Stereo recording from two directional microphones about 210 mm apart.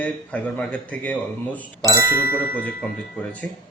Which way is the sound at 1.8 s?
10° right (ahead or behind).